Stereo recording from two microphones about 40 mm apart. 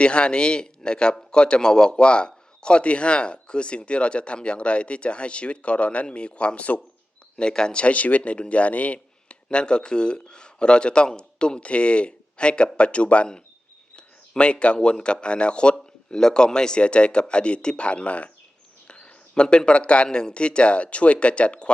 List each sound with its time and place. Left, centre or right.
0.0 s speech: left
7.3 s a man's voice: left
9.5 s speech: left
18.9 s a sound: left
20.1 s speech: left